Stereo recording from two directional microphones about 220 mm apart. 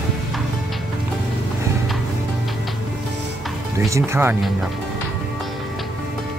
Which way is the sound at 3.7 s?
15° right (ahead or behind).